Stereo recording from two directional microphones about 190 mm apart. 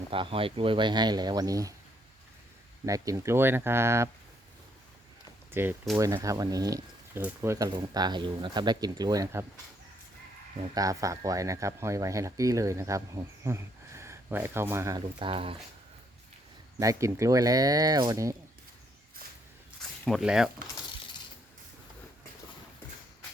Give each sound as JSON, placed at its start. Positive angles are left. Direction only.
{"t": 0.1, "sound": "speech", "side_deg": -30}
{"t": 2.8, "sound": "speech", "side_deg": -15}
{"t": 5.5, "sound": "speech", "side_deg": -10}
{"t": 10.8, "sound": "speech", "side_deg": -15}
{"t": 16.8, "sound": "speech", "side_deg": -15}
{"t": 20.1, "sound": "speech", "side_deg": 0}